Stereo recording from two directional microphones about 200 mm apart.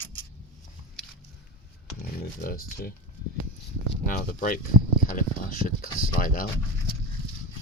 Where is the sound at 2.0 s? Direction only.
45° left (ahead or behind).